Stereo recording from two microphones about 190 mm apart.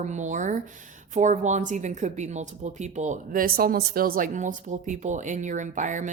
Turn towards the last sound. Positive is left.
turn(degrees=-40)  # may be behind; listen again after turning